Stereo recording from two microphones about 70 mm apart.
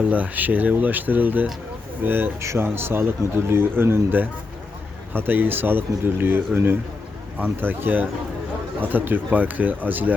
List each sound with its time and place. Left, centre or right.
0.1 s speech: right
2.4 s speech: right